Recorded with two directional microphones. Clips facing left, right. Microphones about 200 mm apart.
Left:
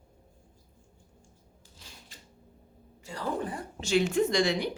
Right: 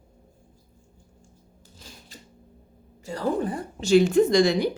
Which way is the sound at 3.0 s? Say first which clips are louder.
Right 7 dB; 40° right (ahead or behind).